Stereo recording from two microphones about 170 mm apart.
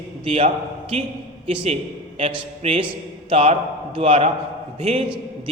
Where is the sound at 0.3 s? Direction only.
35° right (ahead or behind).